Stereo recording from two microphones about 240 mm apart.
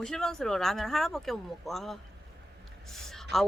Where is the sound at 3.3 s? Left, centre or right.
Centre.